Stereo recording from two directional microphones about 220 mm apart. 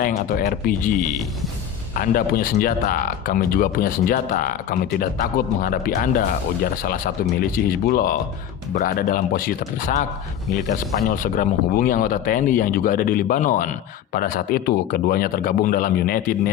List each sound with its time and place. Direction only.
0.0 s speech: 40° left (ahead or behind)